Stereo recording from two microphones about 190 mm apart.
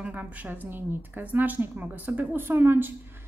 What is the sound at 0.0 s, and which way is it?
A woman's voice, 5° right (ahead or behind).